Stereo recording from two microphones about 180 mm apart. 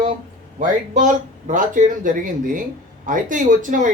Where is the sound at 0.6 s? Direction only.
45° right (ahead or behind).